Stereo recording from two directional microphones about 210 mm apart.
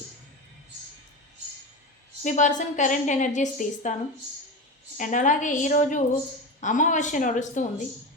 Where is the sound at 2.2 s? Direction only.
35° left (ahead or behind).